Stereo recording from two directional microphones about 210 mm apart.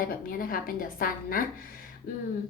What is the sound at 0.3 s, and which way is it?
A woman's voice, 45° left (ahead or behind).